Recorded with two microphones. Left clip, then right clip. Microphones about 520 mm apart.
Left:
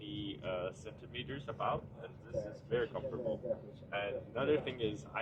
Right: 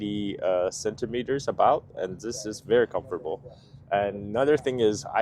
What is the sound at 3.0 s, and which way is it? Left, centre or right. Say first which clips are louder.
Speech: right 8 dB; right.